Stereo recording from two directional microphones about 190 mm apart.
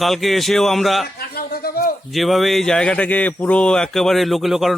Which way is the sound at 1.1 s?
55° left (ahead or behind).